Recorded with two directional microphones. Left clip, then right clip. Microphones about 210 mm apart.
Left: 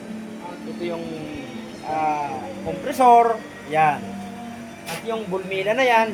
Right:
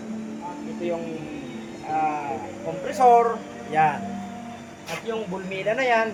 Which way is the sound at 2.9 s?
25° left (ahead or behind).